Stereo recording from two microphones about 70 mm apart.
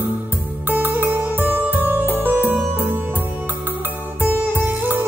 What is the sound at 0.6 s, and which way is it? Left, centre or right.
Music, right.